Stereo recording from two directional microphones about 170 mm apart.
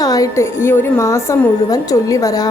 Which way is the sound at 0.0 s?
20° left (ahead or behind).